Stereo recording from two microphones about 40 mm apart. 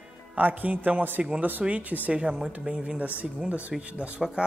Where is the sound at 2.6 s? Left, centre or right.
Right.